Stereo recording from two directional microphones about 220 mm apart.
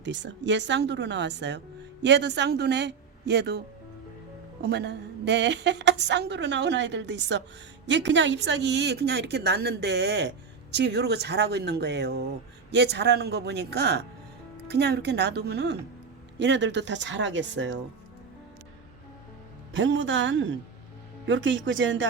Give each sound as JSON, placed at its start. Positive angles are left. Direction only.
{"t": 0.0, "sound": "a woman's voice", "side_deg": -55}
{"t": 4.6, "sound": "a woman's voice", "side_deg": -50}
{"t": 19.7, "sound": "speech", "side_deg": -60}